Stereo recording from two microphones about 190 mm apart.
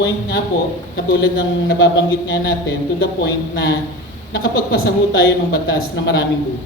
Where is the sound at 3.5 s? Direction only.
60° left (ahead or behind).